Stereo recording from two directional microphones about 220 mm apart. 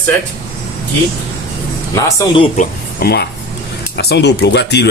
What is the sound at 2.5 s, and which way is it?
Speech, 45° left (ahead or behind).